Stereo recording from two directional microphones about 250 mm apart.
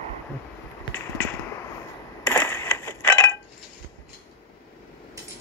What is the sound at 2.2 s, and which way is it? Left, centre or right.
Coin, centre.